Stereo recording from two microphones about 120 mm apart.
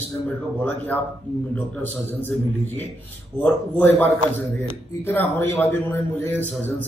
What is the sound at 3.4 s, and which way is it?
Speech, 15° left (ahead or behind).